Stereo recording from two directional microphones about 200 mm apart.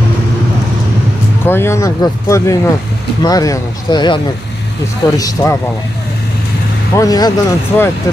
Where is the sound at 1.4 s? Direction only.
10° left (ahead or behind).